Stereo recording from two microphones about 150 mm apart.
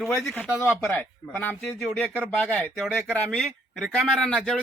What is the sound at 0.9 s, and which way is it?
A man's voice, 15° left (ahead or behind).